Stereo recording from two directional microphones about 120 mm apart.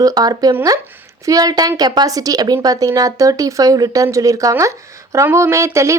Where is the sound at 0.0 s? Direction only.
30° right (ahead or behind).